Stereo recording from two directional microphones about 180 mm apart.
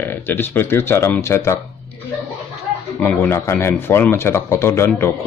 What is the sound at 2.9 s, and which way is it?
Speech, 10° left (ahead or behind).